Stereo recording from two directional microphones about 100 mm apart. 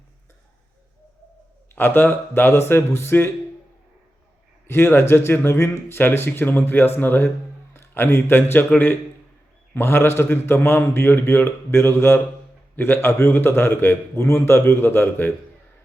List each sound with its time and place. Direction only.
1.7 s a man's voice: 20° left (ahead or behind)
4.7 s a man's voice: 25° left (ahead or behind)
9.7 s a man's voice: 20° left (ahead or behind)